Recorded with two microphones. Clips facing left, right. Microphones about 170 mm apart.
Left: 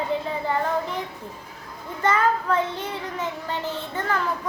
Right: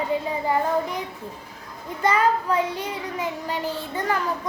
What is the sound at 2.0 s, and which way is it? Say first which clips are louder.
Child singing: right 1 dB; 15° right (ahead or behind).